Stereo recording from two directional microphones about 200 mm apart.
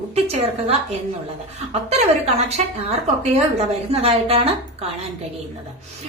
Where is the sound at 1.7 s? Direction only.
30° right (ahead or behind).